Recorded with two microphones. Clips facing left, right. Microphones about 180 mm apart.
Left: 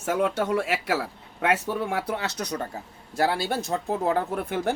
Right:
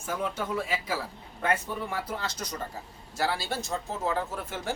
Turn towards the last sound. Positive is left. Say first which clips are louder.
# left 7 dB
turn(degrees=55)  # may be behind; listen again after turning